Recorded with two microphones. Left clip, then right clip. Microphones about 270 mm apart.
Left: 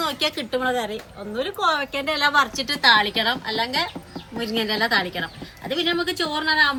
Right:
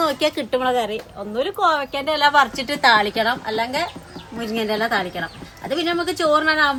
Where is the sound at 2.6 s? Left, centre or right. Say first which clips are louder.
Right 1 dB; right.